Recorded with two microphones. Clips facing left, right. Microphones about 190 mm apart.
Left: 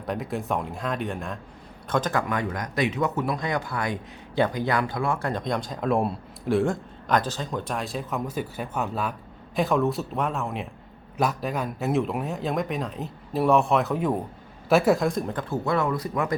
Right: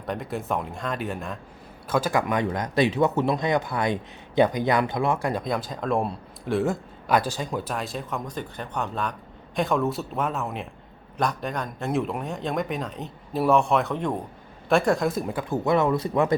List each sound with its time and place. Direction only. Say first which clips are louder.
0.0 s speech: left 1 dB; centre (ahead or behind)
2.2 s speech: right 3 dB; 20° right (ahead or behind)